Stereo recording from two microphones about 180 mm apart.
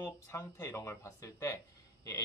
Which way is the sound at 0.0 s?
15° left (ahead or behind).